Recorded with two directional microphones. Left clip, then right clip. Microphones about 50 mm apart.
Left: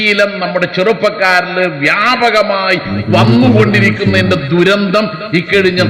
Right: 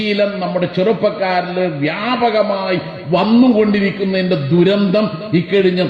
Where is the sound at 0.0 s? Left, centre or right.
Left.